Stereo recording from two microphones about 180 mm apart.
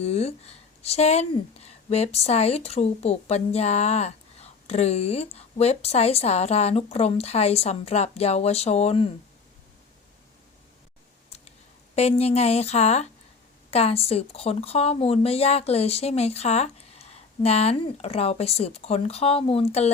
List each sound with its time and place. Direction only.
0.0 s speech: 35° left (ahead or behind)
11.9 s speech: 35° left (ahead or behind)